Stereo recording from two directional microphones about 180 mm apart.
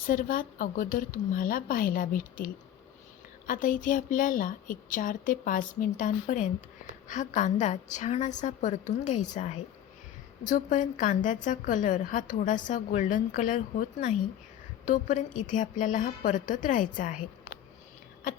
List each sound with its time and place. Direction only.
0.1 s a woman's voice: 50° left (ahead or behind)
10.5 s a woman's voice: 45° left (ahead or behind)